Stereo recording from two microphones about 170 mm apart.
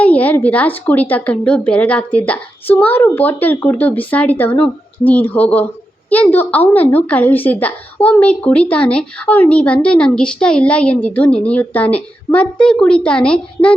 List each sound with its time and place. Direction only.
0.0 s a woman's voice: 10° left (ahead or behind)